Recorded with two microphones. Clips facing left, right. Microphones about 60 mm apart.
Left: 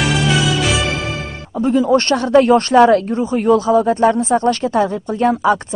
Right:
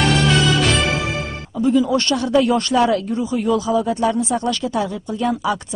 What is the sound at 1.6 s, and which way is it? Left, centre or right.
Speech, left.